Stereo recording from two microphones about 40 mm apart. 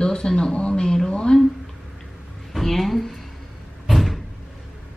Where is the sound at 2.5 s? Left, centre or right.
Centre.